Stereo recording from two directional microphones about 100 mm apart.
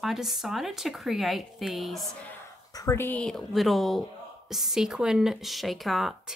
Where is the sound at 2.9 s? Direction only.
20° left (ahead or behind).